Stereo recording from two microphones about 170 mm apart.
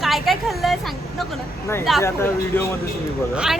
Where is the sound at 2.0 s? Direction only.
15° left (ahead or behind).